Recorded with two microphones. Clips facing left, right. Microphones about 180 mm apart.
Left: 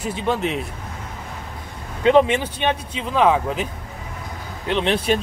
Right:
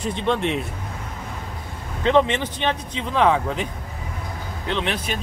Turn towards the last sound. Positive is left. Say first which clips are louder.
# left 4 dB
turn(degrees=20)  # may be behind; listen again after turning